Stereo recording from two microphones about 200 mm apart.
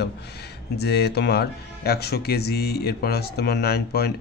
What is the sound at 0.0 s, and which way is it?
Speech, 55° left (ahead or behind).